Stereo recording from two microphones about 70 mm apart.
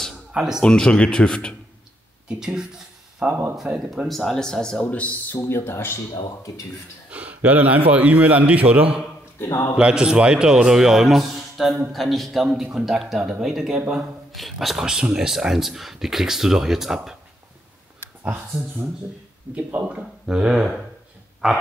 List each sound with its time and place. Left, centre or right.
0.3 s speech: centre
0.6 s speech: centre
2.2 s speech: centre
3.3 s a man's voice: right
3.5 s speech: centre
4.1 s speech: centre
4.8 s speech: left
5.5 s speech: left
7.1 s a man's voice: right
19.5 s a man's voice: right; by 21.6 s centre